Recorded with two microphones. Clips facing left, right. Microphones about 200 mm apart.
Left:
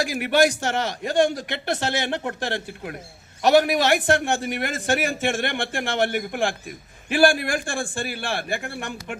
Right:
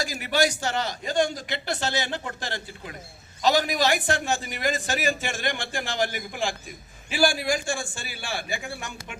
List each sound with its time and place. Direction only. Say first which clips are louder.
0.0 s a man's voice: left 5 dB; 60° left (ahead or behind)